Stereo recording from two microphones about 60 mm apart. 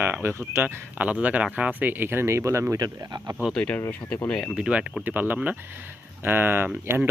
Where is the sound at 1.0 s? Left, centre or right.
Right.